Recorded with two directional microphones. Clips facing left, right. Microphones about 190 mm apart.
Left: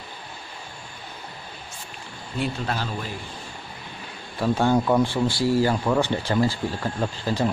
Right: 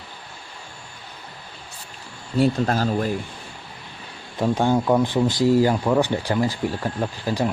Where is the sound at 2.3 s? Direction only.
40° right (ahead or behind).